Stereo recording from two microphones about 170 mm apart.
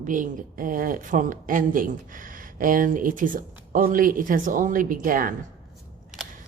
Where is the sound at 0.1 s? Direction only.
50° right (ahead or behind).